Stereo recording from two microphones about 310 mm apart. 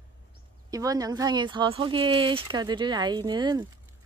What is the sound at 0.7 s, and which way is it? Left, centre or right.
Speech, centre.